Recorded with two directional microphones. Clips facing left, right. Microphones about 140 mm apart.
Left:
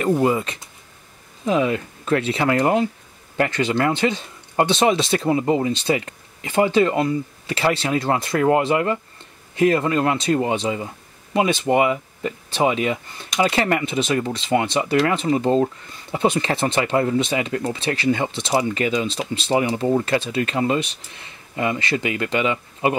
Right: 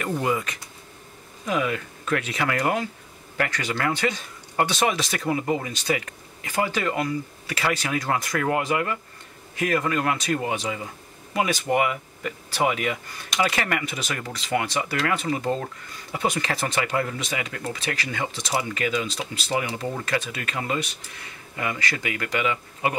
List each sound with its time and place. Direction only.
0.0 s speech: 30° left (ahead or behind)